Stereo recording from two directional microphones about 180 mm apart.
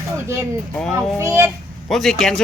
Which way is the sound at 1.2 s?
15° right (ahead or behind).